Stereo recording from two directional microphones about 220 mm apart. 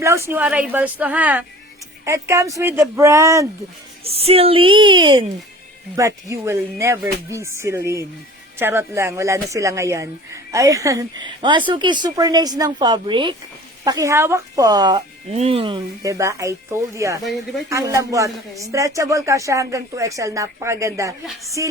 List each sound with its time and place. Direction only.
0.0 s speech: 10° right (ahead or behind)
4.0 s a woman's voice: 25° right (ahead or behind)
15.3 s speech: 30° right (ahead or behind)